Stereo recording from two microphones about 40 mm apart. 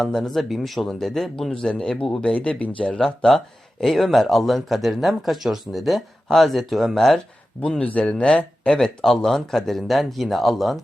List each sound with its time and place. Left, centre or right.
0.2 s speech: centre
2.0 s speech: left
3.2 s speech: centre
7.8 s speech: left
8.7 s speech: left
9.0 s speech: centre